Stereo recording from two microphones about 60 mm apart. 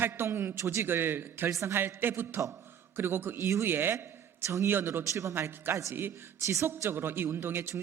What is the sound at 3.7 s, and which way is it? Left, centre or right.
A man's voice, right.